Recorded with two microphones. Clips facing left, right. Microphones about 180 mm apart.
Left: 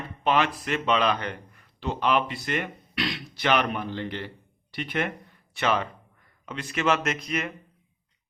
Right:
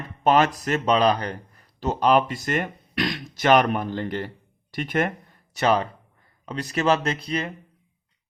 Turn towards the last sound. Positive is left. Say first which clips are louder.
# right 2 dB
turn(degrees=-30)  # may be behind; listen again after turning